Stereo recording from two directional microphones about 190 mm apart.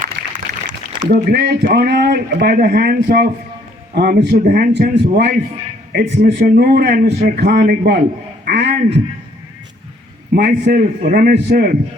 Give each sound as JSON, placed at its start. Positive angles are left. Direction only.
{"t": 0.7, "sound": "a man's voice", "side_deg": -55}
{"t": 10.3, "sound": "a man's voice", "side_deg": -55}